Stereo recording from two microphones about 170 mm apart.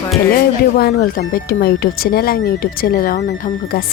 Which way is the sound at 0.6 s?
65° left (ahead or behind).